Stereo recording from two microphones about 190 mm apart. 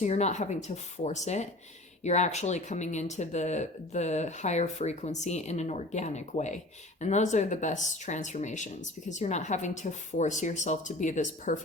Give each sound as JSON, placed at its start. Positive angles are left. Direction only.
{"t": 0.0, "sound": "speech", "side_deg": 35}